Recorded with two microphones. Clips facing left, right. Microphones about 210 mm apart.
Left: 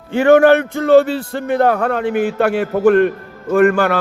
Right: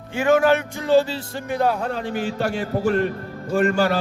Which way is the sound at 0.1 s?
60° left (ahead or behind).